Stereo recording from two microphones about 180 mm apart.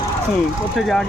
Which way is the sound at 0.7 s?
Centre (ahead or behind).